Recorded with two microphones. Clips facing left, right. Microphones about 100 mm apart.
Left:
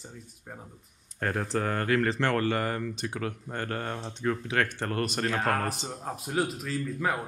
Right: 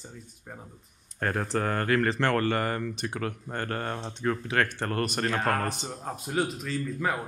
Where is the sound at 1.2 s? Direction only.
50° right (ahead or behind).